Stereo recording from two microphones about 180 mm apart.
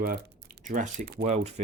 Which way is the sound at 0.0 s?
60° right (ahead or behind).